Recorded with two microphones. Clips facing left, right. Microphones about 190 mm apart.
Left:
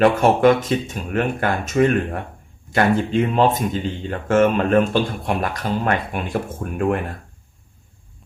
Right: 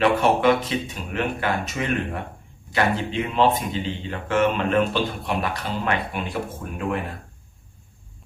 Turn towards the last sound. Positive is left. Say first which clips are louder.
# left 6 dB
turn(degrees=50)  # may be behind; listen again after turning